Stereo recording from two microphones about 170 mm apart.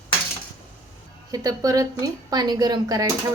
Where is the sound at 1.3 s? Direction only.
20° right (ahead or behind).